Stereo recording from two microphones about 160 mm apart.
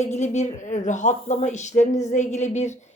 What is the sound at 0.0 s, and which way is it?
A woman's voice, 45° left (ahead or behind).